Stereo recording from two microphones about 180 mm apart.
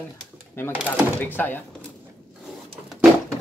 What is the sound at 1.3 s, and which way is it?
Speech, 10° left (ahead or behind).